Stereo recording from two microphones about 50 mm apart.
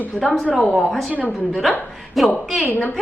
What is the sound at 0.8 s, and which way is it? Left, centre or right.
Speech, centre.